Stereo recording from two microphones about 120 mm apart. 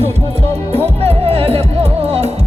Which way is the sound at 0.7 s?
60° right (ahead or behind).